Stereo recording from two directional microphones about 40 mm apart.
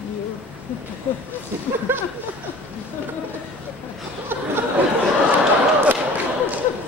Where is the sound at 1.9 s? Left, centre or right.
Right.